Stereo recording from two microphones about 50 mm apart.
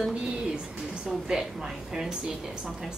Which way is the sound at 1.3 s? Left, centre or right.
Centre.